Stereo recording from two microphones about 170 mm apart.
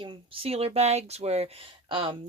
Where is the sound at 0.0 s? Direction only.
35° right (ahead or behind).